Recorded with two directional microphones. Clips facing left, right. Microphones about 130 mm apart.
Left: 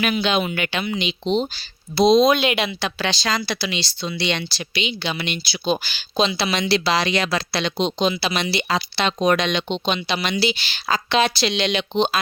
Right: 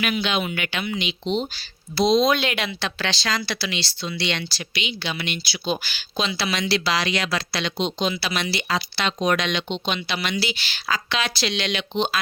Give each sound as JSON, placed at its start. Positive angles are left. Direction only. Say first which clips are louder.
{"t": 0.0, "sound": "speech", "louder": "left 3 dB", "side_deg": 35}
{"t": 2.0, "sound": "speech", "louder": "left 4 dB", "side_deg": 15}